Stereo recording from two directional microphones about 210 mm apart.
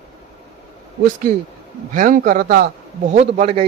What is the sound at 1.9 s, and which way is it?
A man's voice, 40° right (ahead or behind).